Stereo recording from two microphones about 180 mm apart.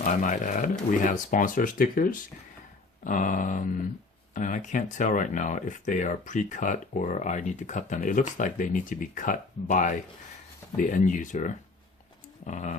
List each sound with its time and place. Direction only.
0.0 s speech: 45° left (ahead or behind)